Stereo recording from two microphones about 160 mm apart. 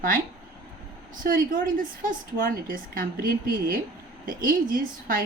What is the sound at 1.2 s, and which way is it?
A woman's voice, 60° right (ahead or behind).